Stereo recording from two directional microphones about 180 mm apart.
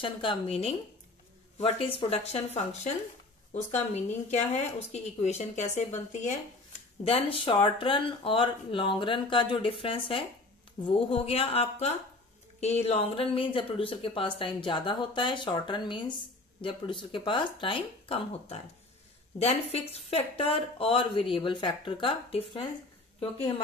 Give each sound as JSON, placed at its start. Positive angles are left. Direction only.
{"t": 0.0, "sound": "speech", "side_deg": 25}
{"t": 7.1, "sound": "speech", "side_deg": 30}